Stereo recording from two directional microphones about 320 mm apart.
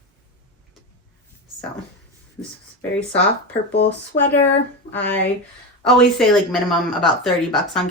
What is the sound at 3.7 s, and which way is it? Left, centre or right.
Speech, left.